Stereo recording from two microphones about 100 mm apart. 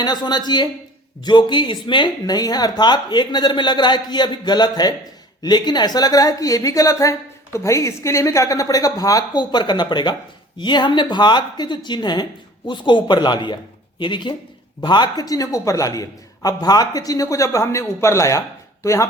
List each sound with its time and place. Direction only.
0.0 s a woman's voice: 45° left (ahead or behind)